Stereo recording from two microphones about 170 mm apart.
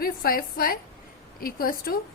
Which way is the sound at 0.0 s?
60° left (ahead or behind).